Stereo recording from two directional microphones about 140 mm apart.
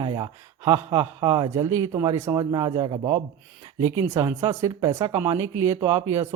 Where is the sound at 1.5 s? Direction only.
20° right (ahead or behind).